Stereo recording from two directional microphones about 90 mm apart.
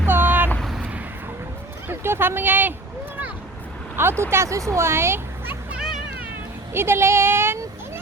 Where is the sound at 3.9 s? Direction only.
25° right (ahead or behind).